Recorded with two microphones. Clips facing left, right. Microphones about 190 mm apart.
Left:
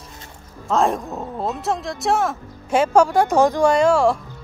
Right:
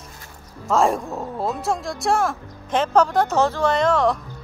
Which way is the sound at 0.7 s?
Centre (ahead or behind).